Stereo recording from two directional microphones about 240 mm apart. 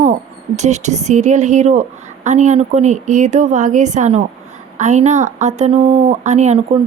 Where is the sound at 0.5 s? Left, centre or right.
Right.